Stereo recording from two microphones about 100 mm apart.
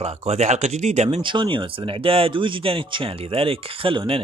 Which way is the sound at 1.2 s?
55° right (ahead or behind).